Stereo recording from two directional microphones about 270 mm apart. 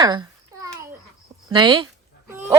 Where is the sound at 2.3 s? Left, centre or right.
Centre.